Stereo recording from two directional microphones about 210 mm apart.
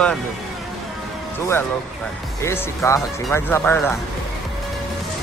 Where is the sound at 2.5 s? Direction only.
15° left (ahead or behind).